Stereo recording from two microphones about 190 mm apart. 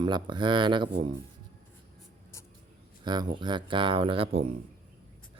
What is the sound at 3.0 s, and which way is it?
Speech, 25° right (ahead or behind).